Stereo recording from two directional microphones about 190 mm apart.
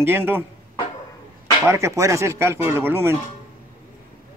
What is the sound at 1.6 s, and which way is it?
Speech, 15° right (ahead or behind).